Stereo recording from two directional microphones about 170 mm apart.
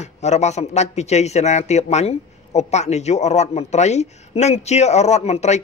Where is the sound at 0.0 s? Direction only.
40° left (ahead or behind).